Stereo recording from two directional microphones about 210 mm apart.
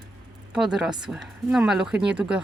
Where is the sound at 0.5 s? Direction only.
Centre (ahead or behind).